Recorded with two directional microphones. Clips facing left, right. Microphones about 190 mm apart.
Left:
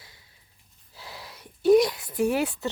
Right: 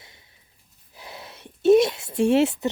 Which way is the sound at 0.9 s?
20° right (ahead or behind).